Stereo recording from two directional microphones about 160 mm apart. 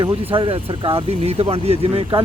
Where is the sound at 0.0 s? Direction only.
35° right (ahead or behind).